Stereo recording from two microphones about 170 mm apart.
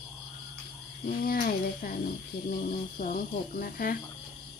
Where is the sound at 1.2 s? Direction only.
55° left (ahead or behind).